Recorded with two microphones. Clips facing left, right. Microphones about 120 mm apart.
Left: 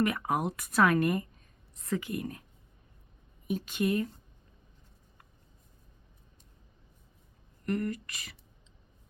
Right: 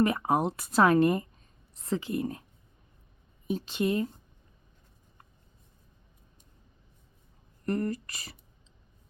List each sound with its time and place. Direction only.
0.0 s speech: 30° right (ahead or behind)
3.4 s speech: 25° right (ahead or behind)
7.6 s speech: 35° right (ahead or behind)